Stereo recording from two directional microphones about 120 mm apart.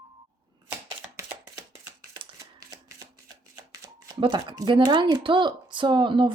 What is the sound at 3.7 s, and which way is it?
Shuffling cards, 35° right (ahead or behind).